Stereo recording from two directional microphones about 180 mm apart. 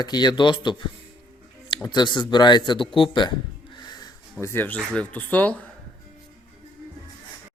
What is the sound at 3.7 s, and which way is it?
Snort, 25° left (ahead or behind).